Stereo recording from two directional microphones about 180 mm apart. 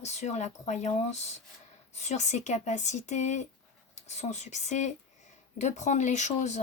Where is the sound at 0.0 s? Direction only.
40° left (ahead or behind).